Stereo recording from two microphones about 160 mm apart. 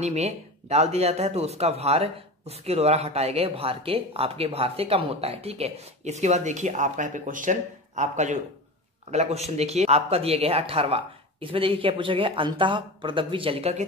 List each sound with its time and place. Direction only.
0.0 s speech: 40° right (ahead or behind)